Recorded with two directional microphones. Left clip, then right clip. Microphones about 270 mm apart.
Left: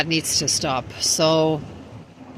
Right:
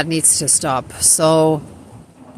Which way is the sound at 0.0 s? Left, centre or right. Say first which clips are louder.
Right 2 dB; centre.